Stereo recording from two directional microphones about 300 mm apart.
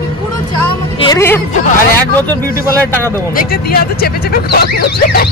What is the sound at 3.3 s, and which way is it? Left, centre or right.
Speech, left.